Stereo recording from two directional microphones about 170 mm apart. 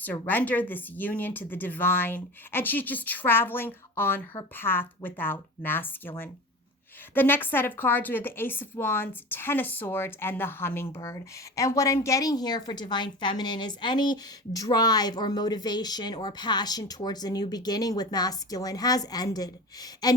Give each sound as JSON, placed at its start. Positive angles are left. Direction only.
{"t": 0.0, "sound": "a woman's voice", "side_deg": 10}